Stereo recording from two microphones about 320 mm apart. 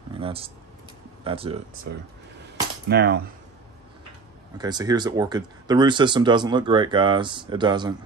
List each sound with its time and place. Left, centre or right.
0.2 s speech: centre
2.9 s speech: right
4.6 s speech: centre